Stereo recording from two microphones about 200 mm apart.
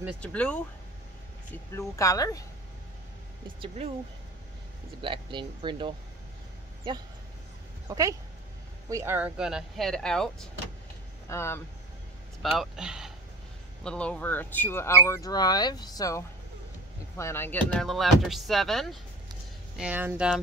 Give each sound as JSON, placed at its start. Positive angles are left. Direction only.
{"t": 0.2, "sound": "speech", "side_deg": 5}
{"t": 1.8, "sound": "speech", "side_deg": 15}
{"t": 3.6, "sound": "speech", "side_deg": -30}
{"t": 5.0, "sound": "speech", "side_deg": -25}
{"t": 7.9, "sound": "speech", "side_deg": -15}
{"t": 12.4, "sound": "speech", "side_deg": 0}